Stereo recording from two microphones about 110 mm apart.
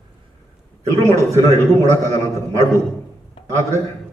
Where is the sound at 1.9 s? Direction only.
25° left (ahead or behind).